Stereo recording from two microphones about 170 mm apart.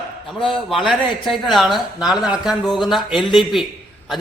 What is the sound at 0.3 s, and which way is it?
Speech, centre (ahead or behind).